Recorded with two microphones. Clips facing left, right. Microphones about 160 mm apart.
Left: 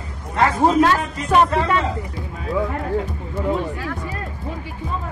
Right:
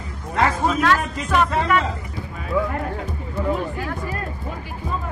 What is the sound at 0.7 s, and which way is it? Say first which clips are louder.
Speech: left 6 dB; 30° left (ahead or behind).